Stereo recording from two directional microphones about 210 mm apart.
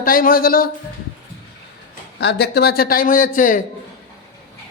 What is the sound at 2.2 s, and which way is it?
A man's voice, 50° left (ahead or behind).